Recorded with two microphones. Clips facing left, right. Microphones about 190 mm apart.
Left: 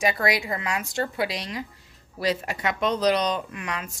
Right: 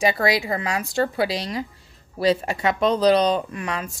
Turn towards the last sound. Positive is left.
turn(degrees=-35)  # may be behind; listen again after turning